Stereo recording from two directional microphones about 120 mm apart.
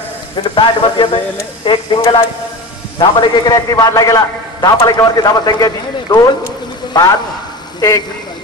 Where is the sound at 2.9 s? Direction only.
35° left (ahead or behind).